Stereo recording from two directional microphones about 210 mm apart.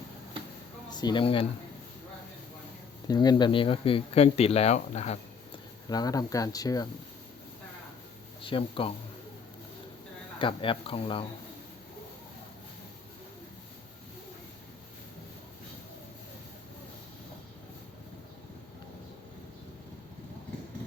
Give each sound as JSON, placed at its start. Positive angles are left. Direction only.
{"t": 0.9, "sound": "speech", "side_deg": 20}
{"t": 3.1, "sound": "speech", "side_deg": 20}
{"t": 5.9, "sound": "speech", "side_deg": 15}
{"t": 8.4, "sound": "speech", "side_deg": 25}
{"t": 10.3, "sound": "speech", "side_deg": 25}